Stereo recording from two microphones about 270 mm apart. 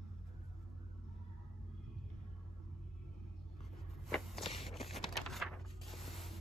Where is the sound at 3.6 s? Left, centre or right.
Centre.